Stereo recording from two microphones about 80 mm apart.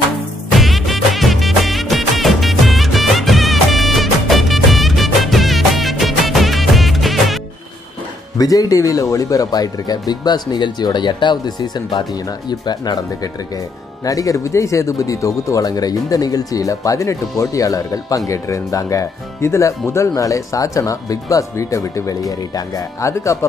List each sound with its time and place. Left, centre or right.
0.6 s music: centre
8.4 s speech: left
10.5 s speech: left
14.0 s speech: left